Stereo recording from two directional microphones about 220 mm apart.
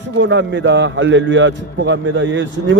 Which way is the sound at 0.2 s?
55° right (ahead or behind).